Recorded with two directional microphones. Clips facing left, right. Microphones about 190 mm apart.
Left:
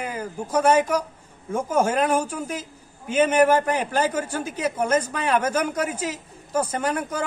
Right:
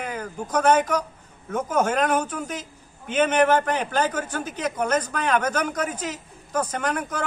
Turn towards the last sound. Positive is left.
turn(degrees=10)  # may be behind; listen again after turning